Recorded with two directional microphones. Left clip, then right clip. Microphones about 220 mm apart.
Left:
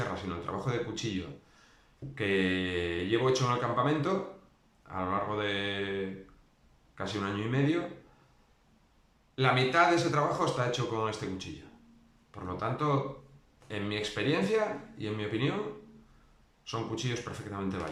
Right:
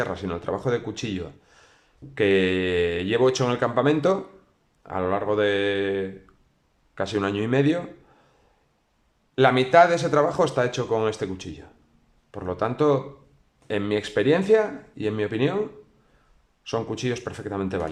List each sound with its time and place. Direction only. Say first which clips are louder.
0.1 s speech: right 8 dB; 40° right (ahead or behind)
9.3 s speech: right 10 dB; 40° right (ahead or behind)
16.6 s speech: right 9 dB; 40° right (ahead or behind)